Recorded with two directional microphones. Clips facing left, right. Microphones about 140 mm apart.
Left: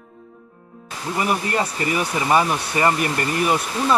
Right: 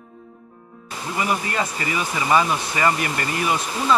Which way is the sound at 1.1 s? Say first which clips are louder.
Left 2 dB; 45° left (ahead or behind).